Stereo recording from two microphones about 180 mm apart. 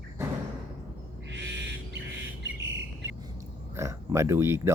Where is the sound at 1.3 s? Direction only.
75° right (ahead or behind).